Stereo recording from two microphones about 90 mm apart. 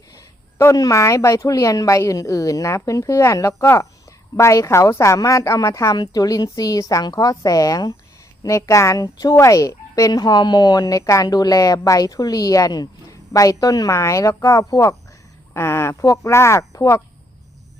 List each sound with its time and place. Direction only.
0.1 s speech: 35° left (ahead or behind)
15.5 s speech: 30° left (ahead or behind)